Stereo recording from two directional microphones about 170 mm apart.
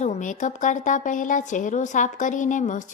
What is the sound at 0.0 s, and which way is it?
A woman's voice, 45° left (ahead or behind).